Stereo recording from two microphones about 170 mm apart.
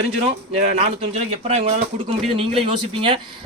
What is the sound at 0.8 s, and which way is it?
Speech, 35° right (ahead or behind).